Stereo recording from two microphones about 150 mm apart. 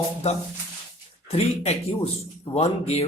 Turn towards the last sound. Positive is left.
turn(degrees=40)  # may be behind; listen again after turning